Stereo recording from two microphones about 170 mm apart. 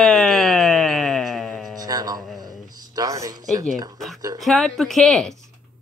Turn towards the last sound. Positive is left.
turn(degrees=0)  # may be behind; listen again after turning